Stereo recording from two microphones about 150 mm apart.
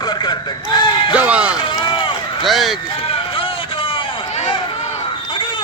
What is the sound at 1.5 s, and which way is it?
Run, 30° left (ahead or behind).